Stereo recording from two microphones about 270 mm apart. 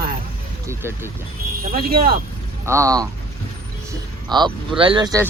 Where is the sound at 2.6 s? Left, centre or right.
Centre.